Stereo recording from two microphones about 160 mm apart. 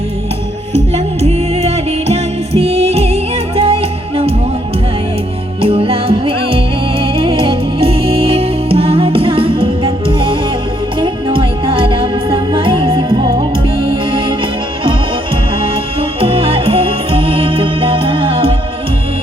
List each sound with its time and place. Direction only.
0.7 s music: 40° right (ahead or behind)
5.6 s music: 35° right (ahead or behind)
15.6 s music: 35° right (ahead or behind)